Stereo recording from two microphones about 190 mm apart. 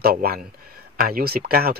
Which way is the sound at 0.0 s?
55° right (ahead or behind).